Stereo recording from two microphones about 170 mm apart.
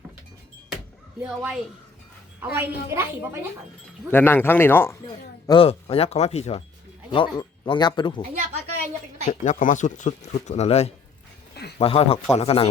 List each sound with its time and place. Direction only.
1.2 s a woman's voice: 5° right (ahead or behind)
4.1 s speech: 10° left (ahead or behind)
5.5 s speech: 35° left (ahead or behind)
7.1 s speech: 25° left (ahead or behind)
9.4 s speech: 50° left (ahead or behind)